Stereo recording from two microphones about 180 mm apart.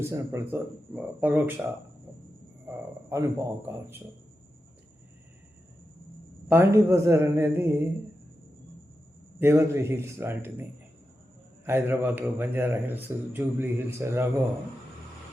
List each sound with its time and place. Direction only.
0.0 s a man's voice: 15° right (ahead or behind)
2.6 s a man's voice: 15° right (ahead or behind)
6.5 s a man's voice: 10° right (ahead or behind)
9.4 s a man's voice: 15° right (ahead or behind)